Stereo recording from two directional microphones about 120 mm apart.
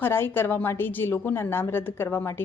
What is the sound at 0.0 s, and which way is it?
A woman's voice, 20° left (ahead or behind).